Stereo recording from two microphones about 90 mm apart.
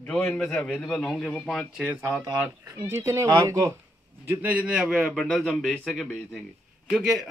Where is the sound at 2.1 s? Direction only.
25° right (ahead or behind).